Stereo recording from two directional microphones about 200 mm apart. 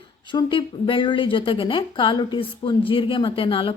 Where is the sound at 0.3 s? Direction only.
25° left (ahead or behind).